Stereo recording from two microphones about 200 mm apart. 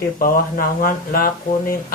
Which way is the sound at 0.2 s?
45° left (ahead or behind).